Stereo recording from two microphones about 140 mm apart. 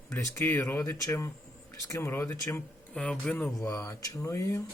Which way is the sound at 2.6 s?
5° left (ahead or behind).